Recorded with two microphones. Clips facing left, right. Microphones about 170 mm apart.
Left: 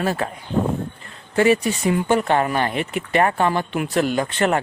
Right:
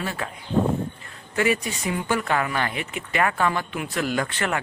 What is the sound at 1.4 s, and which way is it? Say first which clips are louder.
Speech: left 6 dB; 30° left (ahead or behind).